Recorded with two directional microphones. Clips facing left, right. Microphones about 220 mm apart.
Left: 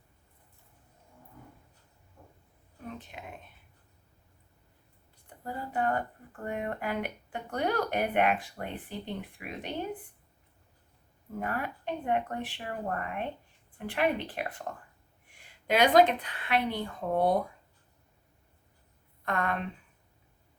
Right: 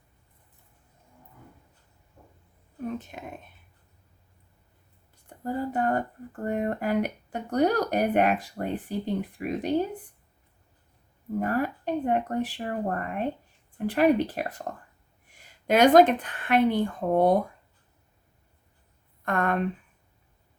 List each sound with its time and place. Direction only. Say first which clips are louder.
3.0 s speech: right 4 dB; 45° right (ahead or behind)
5.4 s speech: right 5 dB; 40° right (ahead or behind)
11.3 s speech: right 8 dB; 40° right (ahead or behind)
19.2 s speech: right 5 dB; 50° right (ahead or behind)